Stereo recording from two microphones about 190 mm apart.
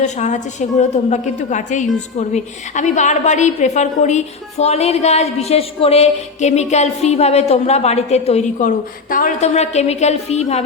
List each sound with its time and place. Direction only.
0.0 s a woman's voice: 40° left (ahead or behind)